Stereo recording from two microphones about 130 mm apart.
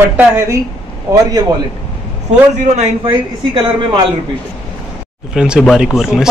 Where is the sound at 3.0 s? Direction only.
40° right (ahead or behind).